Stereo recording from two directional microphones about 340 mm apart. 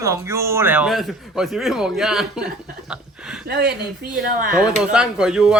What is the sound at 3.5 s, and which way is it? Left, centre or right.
Speech, right.